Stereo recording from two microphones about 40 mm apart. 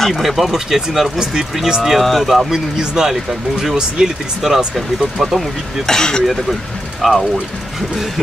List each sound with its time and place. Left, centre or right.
0.1 s speech: centre
1.9 s speech: centre
2.8 s speech: centre
3.1 s speech: centre
5.9 s speech: centre
7.0 s speech: centre